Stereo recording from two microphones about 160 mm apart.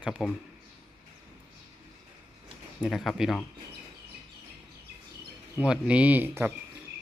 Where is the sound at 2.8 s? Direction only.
Centre (ahead or behind).